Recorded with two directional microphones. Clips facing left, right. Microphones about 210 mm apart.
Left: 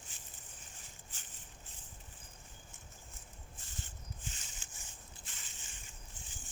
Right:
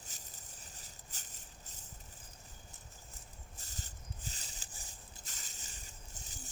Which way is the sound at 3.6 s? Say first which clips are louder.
Left 1 dB; 40° right (ahead or behind).